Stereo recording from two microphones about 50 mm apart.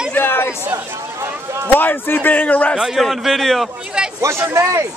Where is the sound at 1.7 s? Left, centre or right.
Left.